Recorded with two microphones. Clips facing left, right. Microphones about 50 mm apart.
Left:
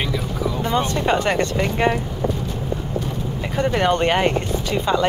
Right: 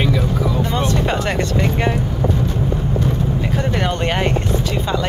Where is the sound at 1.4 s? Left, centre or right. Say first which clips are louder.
Even; centre.